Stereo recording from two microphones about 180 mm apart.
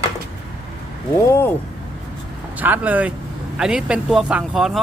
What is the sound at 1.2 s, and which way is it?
Speech, 15° left (ahead or behind).